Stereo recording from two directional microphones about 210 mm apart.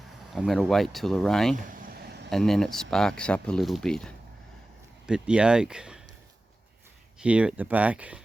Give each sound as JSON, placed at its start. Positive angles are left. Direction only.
{"t": 0.3, "sound": "speech", "side_deg": 0}
{"t": 1.5, "sound": "a sound", "side_deg": -45}
{"t": 2.3, "sound": "speech", "side_deg": 0}
{"t": 7.2, "sound": "speech", "side_deg": -5}